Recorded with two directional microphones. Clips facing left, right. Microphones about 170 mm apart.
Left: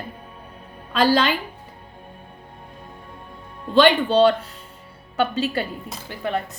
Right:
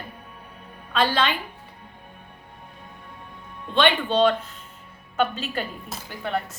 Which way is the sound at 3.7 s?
40° left (ahead or behind).